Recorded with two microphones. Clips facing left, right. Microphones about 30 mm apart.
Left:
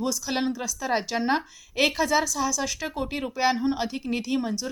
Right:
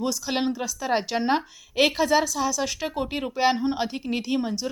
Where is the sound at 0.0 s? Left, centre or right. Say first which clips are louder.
Right 1 dB; centre.